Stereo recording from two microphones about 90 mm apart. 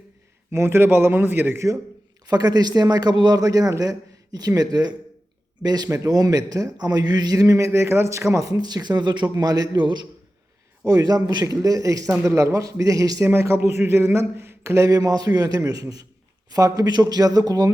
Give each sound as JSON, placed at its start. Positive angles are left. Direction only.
{"t": 0.5, "sound": "a man's voice", "side_deg": -25}
{"t": 2.2, "sound": "a man's voice", "side_deg": -45}
{"t": 10.8, "sound": "a man's voice", "side_deg": -40}
{"t": 13.3, "sound": "a man's voice", "side_deg": -25}